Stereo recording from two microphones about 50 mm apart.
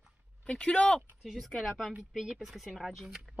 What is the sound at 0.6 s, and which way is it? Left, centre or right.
Speech, left.